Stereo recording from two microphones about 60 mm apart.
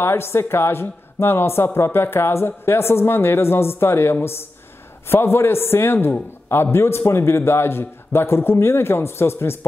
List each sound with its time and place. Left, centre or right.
0.0 s a man's voice: left